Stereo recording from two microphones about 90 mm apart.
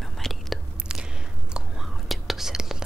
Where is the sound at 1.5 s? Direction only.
5° right (ahead or behind).